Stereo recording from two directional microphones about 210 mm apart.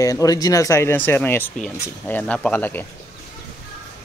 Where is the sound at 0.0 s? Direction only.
15° left (ahead or behind).